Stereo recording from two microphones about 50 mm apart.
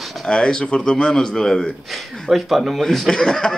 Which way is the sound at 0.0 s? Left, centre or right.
Centre.